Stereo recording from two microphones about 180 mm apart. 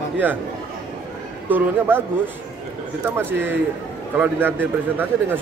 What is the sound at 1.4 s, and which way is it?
Speech, 10° right (ahead or behind).